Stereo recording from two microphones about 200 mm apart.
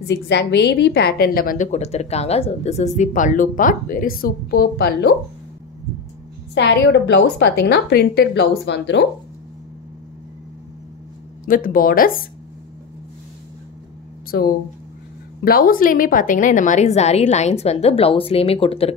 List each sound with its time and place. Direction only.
0.0 s a woman's voice: 60° left (ahead or behind)
6.5 s a woman's voice: 60° left (ahead or behind)
11.4 s a woman's voice: 45° left (ahead or behind)
14.3 s a woman's voice: 55° left (ahead or behind); by 18.9 s 30° left (ahead or behind)